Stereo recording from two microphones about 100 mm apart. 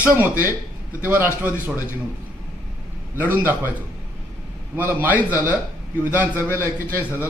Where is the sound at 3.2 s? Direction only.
20° right (ahead or behind).